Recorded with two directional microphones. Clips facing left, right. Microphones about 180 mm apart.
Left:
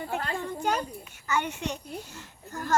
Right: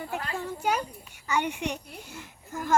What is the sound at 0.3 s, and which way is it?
A child's voice, 5° right (ahead or behind).